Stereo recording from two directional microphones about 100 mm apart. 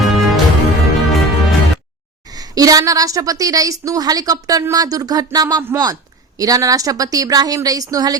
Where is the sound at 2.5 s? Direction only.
35° right (ahead or behind).